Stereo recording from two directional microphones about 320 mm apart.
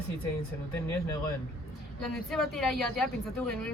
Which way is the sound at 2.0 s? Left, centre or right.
Centre.